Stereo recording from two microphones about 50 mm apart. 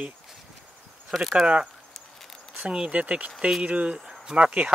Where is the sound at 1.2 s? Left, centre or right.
Centre.